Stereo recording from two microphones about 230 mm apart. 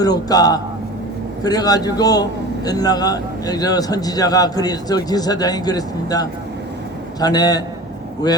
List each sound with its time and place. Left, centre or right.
0.0 s a man's voice: centre